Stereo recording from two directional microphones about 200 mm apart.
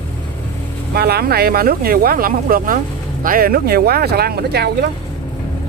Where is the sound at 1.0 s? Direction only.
50° right (ahead or behind).